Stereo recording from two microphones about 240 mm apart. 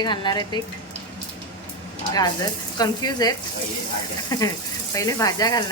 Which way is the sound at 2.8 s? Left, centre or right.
Centre.